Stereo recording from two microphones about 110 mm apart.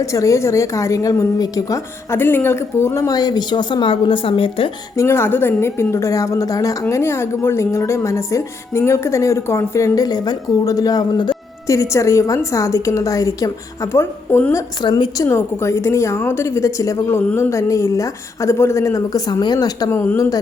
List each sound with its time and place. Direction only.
0.0 s a woman's voice: 30° left (ahead or behind); by 4.7 s 55° left (ahead or behind)
4.9 s a woman's voice: 25° left (ahead or behind); by 11.3 s 40° left (ahead or behind)
11.6 s a woman's voice: 30° left (ahead or behind)
14.5 s speech: 40° left (ahead or behind)
15.2 s a woman's voice: 25° left (ahead or behind)
20.0 s a woman's voice: 20° left (ahead or behind)